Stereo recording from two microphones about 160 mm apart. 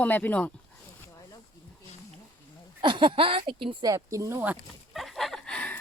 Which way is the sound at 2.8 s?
30° right (ahead or behind).